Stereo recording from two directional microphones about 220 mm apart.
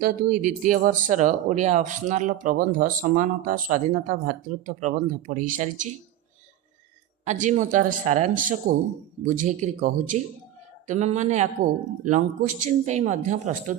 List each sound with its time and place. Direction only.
0.0 s speech: 40° right (ahead or behind)
7.3 s speech: 35° right (ahead or behind)